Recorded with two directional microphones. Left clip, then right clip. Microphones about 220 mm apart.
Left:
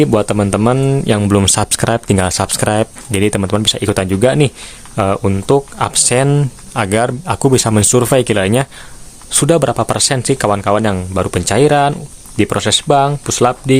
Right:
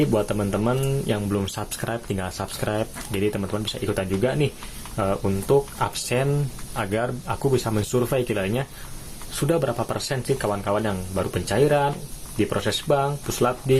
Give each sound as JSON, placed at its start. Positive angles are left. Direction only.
{"t": 0.0, "sound": "speech", "side_deg": 50}